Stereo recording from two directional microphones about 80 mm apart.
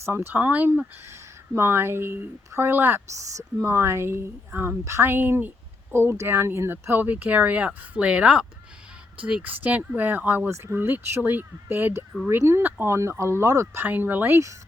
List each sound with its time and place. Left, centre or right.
0.0 s speech: right
1.0 s speech: right
13.8 s speech: right